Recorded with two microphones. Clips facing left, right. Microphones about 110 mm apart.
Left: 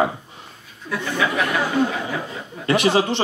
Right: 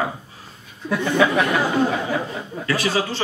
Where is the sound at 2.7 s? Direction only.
20° left (ahead or behind).